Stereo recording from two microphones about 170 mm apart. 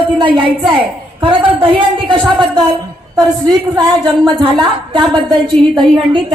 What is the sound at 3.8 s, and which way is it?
A woman's voice, 25° right (ahead or behind).